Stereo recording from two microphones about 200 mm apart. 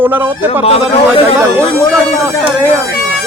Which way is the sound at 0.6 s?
30° left (ahead or behind).